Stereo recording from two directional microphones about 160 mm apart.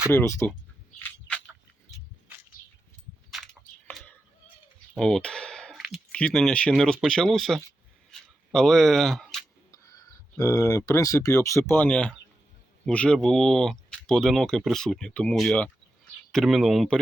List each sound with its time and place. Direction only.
0.1 s speech: 15° left (ahead or behind)
3.8 s a sound: 10° left (ahead or behind)
4.9 s speech: 5° left (ahead or behind)
9.7 s speech: 20° left (ahead or behind); by 17.0 s centre (ahead or behind)